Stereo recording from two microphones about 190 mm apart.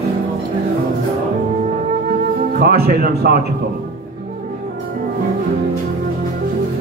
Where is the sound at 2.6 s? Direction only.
55° right (ahead or behind).